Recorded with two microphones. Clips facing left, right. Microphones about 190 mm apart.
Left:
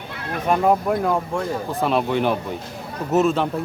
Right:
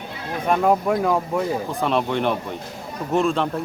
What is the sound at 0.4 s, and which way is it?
Speech, centre (ahead or behind).